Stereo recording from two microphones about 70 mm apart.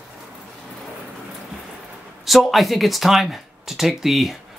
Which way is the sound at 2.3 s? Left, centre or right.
Centre.